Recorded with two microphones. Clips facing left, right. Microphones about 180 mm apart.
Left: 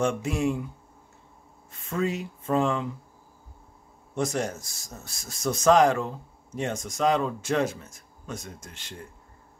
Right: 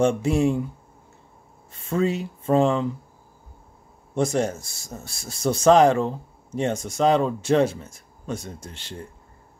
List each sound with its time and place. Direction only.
0.0 s speech: 30° right (ahead or behind)
1.7 s speech: 30° right (ahead or behind)
4.1 s speech: 30° right (ahead or behind)